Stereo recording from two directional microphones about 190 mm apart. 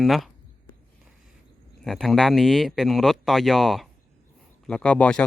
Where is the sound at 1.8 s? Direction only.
Centre (ahead or behind).